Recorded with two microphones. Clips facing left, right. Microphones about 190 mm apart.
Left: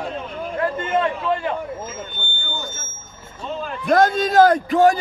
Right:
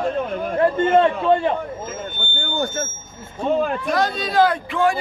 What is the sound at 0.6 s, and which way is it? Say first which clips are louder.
Speech: right 6 dB; 30° right (ahead or behind).